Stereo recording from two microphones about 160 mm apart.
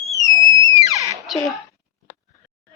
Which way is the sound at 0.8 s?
20° right (ahead or behind).